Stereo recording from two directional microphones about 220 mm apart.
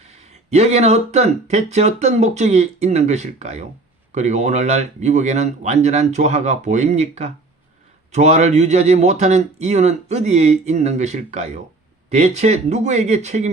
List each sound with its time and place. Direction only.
0.1 s speech: 30° right (ahead or behind)